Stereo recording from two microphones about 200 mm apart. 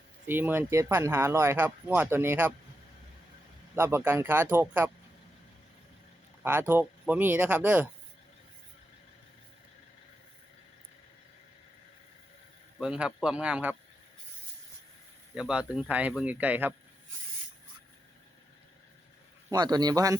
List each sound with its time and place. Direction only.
0.3 s speech: 10° right (ahead or behind)
3.8 s speech: 10° right (ahead or behind)
6.4 s speech: 10° right (ahead or behind)
12.8 s speech: 5° right (ahead or behind)
15.4 s speech: 5° right (ahead or behind)
19.5 s speech: 20° right (ahead or behind)